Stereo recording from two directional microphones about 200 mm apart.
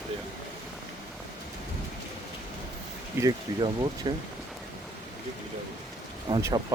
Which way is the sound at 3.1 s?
20° right (ahead or behind).